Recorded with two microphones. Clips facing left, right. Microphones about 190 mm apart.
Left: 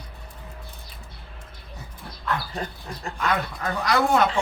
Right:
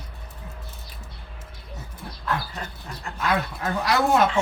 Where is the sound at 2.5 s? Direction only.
35° left (ahead or behind).